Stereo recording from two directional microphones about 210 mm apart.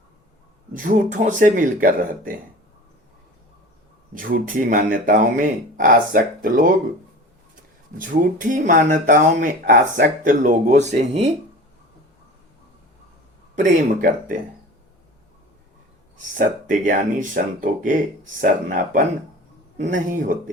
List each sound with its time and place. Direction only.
0.8 s speech: 40° right (ahead or behind)
4.1 s speech: 40° right (ahead or behind)
7.9 s speech: 40° right (ahead or behind)
13.6 s speech: 40° right (ahead or behind)
16.4 s speech: 40° right (ahead or behind)